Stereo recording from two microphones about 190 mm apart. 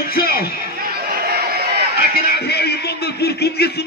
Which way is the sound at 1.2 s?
55° right (ahead or behind).